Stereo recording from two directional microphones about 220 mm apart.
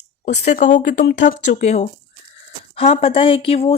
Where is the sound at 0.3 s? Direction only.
35° left (ahead or behind).